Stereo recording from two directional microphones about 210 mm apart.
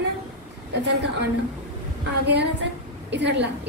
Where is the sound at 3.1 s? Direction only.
55° right (ahead or behind).